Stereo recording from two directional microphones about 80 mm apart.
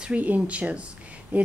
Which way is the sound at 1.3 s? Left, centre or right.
Centre.